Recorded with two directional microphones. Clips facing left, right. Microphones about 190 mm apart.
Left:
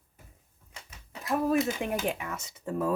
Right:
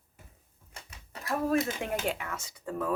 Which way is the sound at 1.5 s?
15° left (ahead or behind).